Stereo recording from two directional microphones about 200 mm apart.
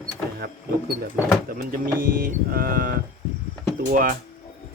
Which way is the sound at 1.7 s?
45° right (ahead or behind).